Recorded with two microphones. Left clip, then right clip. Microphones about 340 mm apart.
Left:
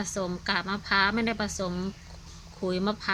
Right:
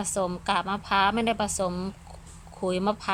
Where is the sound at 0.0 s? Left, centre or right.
Centre.